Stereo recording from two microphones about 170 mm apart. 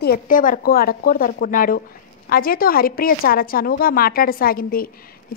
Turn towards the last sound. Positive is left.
turn(degrees=60)  # may be behind; listen again after turning